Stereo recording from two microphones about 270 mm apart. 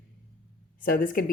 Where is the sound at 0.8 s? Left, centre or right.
Left.